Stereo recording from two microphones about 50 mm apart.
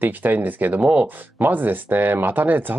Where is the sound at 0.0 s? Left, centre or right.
Right.